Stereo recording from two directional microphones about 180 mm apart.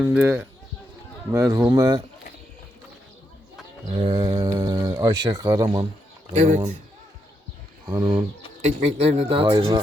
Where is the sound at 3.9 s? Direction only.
25° right (ahead or behind).